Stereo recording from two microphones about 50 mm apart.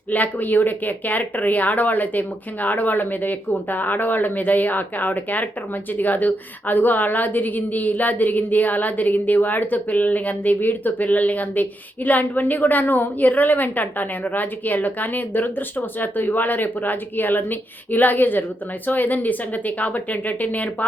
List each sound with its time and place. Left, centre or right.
0.1 s a woman's voice: left